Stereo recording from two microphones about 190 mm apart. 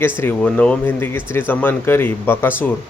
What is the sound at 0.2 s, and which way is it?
Speech, 10° left (ahead or behind).